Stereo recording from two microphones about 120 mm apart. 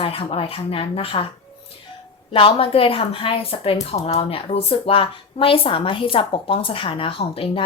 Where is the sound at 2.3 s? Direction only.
50° left (ahead or behind).